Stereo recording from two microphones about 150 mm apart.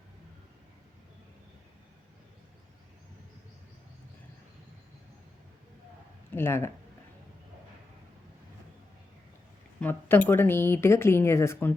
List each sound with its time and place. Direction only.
6.3 s speech: 15° left (ahead or behind)
9.8 s speech: 10° left (ahead or behind)